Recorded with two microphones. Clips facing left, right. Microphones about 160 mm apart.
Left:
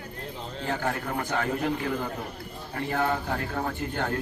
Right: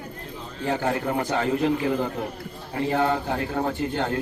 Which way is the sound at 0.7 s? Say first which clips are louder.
Right 5 dB; 25° right (ahead or behind).